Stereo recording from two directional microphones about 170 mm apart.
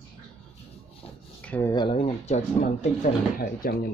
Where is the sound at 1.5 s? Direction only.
10° left (ahead or behind).